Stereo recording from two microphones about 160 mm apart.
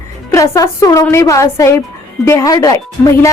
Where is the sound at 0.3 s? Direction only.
20° left (ahead or behind).